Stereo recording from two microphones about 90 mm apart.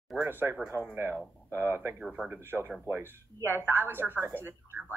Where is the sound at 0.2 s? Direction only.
25° right (ahead or behind).